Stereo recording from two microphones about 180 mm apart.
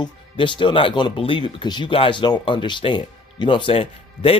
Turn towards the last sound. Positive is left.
turn(degrees=30)  # may be behind; listen again after turning